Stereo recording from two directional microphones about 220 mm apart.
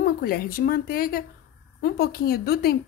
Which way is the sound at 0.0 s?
45° left (ahead or behind).